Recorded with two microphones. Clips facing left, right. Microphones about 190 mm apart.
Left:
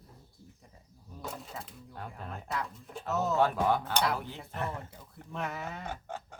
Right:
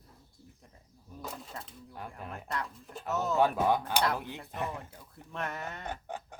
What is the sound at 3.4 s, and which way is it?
Speech, 15° right (ahead or behind).